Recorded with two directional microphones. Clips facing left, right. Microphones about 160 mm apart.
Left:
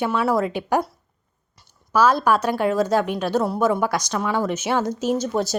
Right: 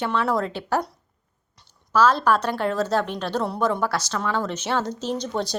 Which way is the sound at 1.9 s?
10° left (ahead or behind).